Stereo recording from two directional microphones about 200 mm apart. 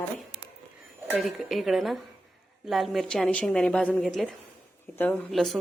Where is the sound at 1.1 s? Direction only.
Centre (ahead or behind).